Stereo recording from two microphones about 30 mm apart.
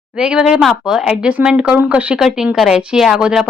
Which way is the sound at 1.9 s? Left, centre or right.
Right.